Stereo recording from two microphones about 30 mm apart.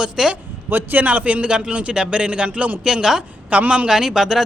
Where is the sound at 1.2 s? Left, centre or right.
Right.